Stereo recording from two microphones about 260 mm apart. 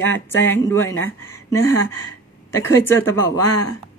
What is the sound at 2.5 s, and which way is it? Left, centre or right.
Speech, centre.